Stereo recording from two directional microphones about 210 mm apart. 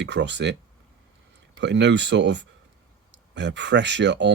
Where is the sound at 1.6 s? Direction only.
55° right (ahead or behind).